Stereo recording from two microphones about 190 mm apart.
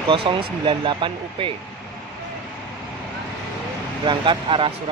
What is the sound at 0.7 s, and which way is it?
Speech, 25° right (ahead or behind).